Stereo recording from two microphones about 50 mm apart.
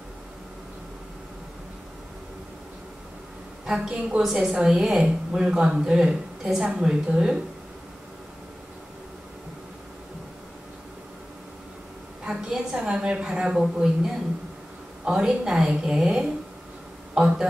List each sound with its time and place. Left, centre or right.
3.6 s a woman's voice: centre
12.3 s a woman's voice: centre